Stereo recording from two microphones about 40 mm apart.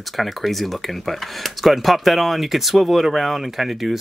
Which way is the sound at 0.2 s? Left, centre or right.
Centre.